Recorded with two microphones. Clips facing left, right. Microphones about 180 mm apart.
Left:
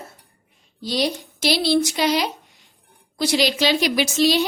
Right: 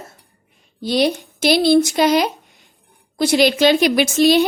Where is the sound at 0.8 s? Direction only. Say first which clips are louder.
Right 6 dB; 60° right (ahead or behind).